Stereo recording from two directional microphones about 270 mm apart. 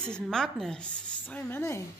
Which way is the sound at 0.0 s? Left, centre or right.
Centre.